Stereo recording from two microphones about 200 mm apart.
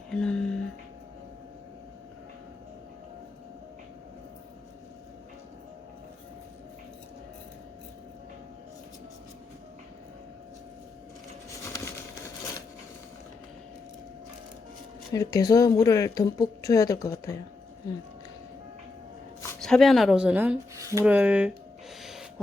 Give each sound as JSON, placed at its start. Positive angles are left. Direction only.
{"t": 0.1, "sound": "music", "side_deg": 5}
{"t": 15.1, "sound": "speech", "side_deg": 15}
{"t": 19.5, "sound": "speech", "side_deg": 0}
{"t": 22.0, "sound": "a sound", "side_deg": 0}